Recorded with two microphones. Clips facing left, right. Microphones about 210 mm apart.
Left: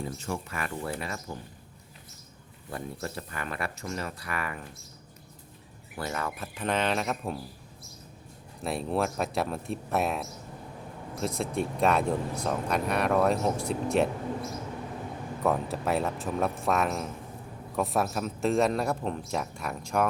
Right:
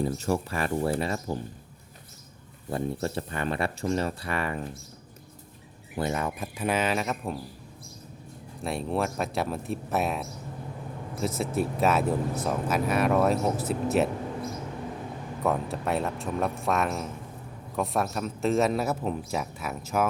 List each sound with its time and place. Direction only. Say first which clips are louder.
0.0 s speech: right 7 dB; 40° right (ahead or behind)
1.0 s speech: right 7 dB; 30° right (ahead or behind)
2.6 s speech: right 7 dB; 30° right (ahead or behind)
6.0 s speech: right 4 dB; 20° right (ahead or behind); by 7.3 s centre (ahead or behind)
8.6 s speech: even; centre (ahead or behind)
15.4 s speech: even; centre (ahead or behind)